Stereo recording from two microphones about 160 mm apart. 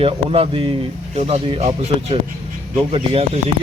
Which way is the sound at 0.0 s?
35° right (ahead or behind).